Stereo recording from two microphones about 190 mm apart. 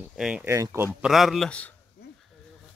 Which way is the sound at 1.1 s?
Centre (ahead or behind).